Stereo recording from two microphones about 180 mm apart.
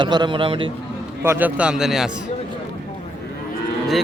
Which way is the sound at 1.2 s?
10° right (ahead or behind).